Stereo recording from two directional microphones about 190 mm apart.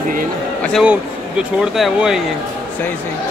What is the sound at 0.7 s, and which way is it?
Speech, 5° right (ahead or behind).